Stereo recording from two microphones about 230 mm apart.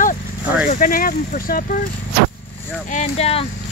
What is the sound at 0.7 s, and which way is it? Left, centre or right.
Speech, left.